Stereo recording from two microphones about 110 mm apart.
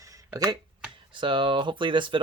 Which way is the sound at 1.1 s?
50° right (ahead or behind).